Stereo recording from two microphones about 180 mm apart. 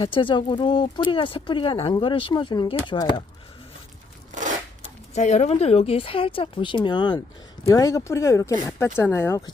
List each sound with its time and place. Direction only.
0.0 s speech: 30° left (ahead or behind)
4.3 s a sound: 45° right (ahead or behind)
5.1 s speech: 40° left (ahead or behind); by 9.4 s 15° left (ahead or behind)